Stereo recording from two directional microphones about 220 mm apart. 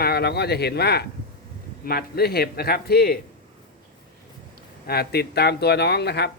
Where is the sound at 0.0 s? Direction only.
45° left (ahead or behind).